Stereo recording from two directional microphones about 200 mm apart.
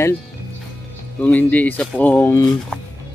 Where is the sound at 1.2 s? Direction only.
10° left (ahead or behind).